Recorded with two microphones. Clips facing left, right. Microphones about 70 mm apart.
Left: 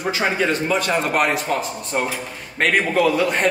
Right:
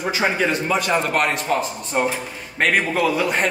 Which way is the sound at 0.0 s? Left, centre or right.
Centre.